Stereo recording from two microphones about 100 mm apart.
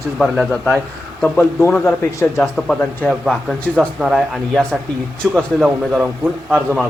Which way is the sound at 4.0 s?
5° right (ahead or behind).